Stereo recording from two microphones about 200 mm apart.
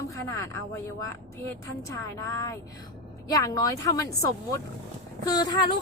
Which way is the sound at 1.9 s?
15° left (ahead or behind).